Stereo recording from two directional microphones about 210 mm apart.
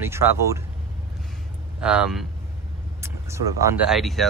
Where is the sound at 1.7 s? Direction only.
5° right (ahead or behind).